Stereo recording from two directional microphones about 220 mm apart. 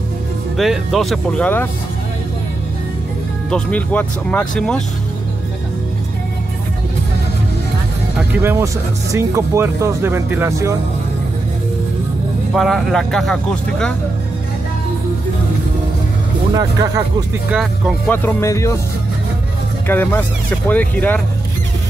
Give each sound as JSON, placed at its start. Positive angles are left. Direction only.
{"t": 0.6, "sound": "speech", "side_deg": 0}
{"t": 3.4, "sound": "speech", "side_deg": 5}
{"t": 8.4, "sound": "speech", "side_deg": -10}
{"t": 12.5, "sound": "speech", "side_deg": 0}
{"t": 16.5, "sound": "speech", "side_deg": -15}
{"t": 17.5, "sound": "speech", "side_deg": 0}
{"t": 18.1, "sound": "speech", "side_deg": 10}
{"t": 19.9, "sound": "speech", "side_deg": 10}